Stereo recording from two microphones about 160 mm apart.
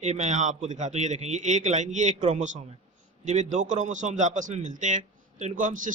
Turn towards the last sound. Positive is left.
turn(degrees=-55)  # may be behind; listen again after turning